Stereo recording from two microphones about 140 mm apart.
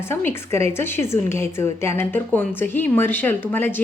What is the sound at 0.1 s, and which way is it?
Speech, 15° left (ahead or behind).